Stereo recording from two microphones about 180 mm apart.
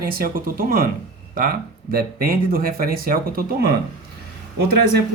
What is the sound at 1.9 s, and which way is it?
Speech, 55° right (ahead or behind).